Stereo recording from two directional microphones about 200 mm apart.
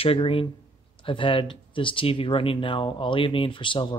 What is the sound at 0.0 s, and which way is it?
Speech, 30° left (ahead or behind).